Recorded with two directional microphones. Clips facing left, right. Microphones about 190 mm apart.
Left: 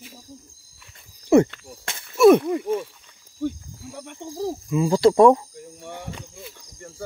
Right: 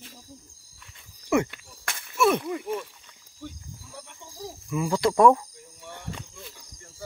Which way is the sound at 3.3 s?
55° left (ahead or behind).